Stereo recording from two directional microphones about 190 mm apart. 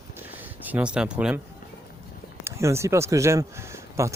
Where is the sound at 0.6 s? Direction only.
10° right (ahead or behind).